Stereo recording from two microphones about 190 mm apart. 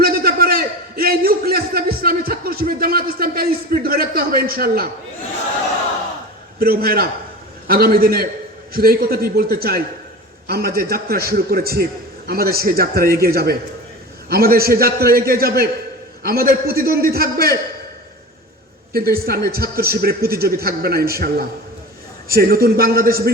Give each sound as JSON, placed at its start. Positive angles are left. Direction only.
{"t": 0.0, "sound": "a sound", "side_deg": -50}
{"t": 6.6, "sound": "a man's voice", "side_deg": -50}
{"t": 19.2, "sound": "a man's voice", "side_deg": -55}